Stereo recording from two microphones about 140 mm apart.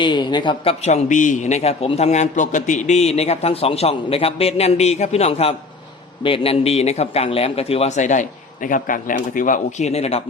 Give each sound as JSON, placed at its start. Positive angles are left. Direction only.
{"t": 0.0, "sound": "a man's voice", "side_deg": 35}